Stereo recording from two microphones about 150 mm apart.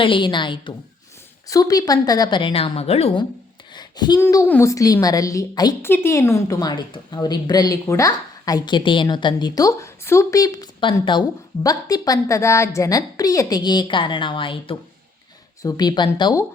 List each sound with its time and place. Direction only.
0.0 s a woman's voice: 35° left (ahead or behind)
3.8 s a sound: 30° left (ahead or behind)
4.2 s a woman's voice: 20° left (ahead or behind)